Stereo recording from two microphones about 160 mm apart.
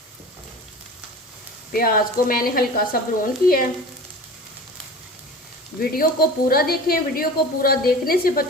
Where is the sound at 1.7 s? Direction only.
60° left (ahead or behind).